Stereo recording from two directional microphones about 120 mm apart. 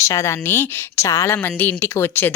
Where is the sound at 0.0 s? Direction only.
25° left (ahead or behind).